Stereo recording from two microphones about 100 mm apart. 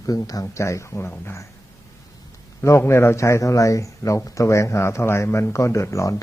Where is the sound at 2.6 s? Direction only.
25° left (ahead or behind).